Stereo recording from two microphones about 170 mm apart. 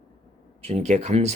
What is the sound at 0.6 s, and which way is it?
Speech, 40° right (ahead or behind).